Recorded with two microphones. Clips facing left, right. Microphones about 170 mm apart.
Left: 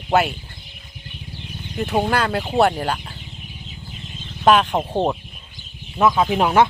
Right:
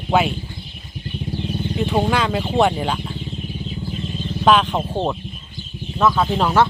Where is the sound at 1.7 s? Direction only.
5° left (ahead or behind).